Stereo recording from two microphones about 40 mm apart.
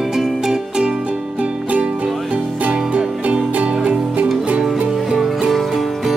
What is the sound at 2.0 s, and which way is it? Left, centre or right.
Music, centre.